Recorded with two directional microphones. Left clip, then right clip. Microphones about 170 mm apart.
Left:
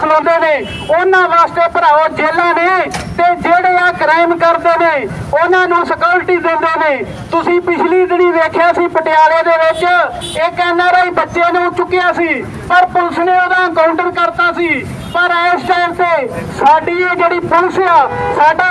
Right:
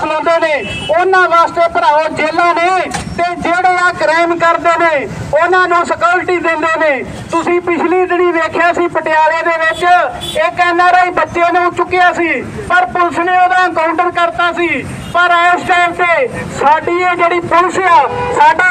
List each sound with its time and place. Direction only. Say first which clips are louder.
0.0 s a man's voice: left 2 dB; 20° right (ahead or behind)